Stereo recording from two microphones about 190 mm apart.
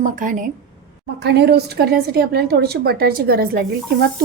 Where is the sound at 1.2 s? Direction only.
60° right (ahead or behind).